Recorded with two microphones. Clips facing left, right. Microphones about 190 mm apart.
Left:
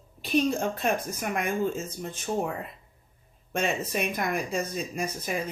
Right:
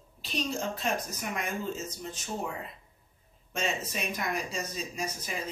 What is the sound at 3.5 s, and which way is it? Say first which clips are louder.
Speech: left 5 dB; 55° left (ahead or behind).